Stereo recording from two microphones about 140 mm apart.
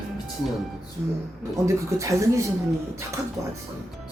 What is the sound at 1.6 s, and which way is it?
Speech, 20° right (ahead or behind).